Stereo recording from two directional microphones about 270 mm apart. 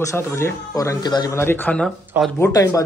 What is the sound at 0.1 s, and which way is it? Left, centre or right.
Speech, centre.